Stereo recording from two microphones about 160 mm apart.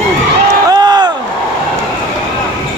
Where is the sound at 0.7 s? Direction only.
25° right (ahead or behind).